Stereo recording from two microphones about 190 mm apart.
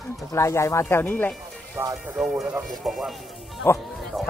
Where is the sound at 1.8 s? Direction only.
15° right (ahead or behind).